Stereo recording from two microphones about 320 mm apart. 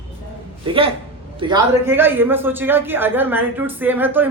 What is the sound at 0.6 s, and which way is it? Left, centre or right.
A man's voice, centre.